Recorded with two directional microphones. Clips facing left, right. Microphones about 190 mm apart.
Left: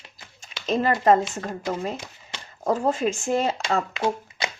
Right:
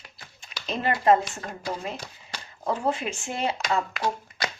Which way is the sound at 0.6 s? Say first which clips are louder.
Left 2 dB; 40° left (ahead or behind).